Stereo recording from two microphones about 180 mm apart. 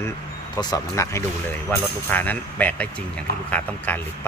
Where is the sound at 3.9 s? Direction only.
10° left (ahead or behind).